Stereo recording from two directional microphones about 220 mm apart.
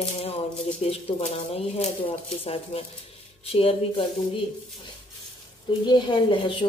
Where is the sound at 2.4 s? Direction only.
25° left (ahead or behind).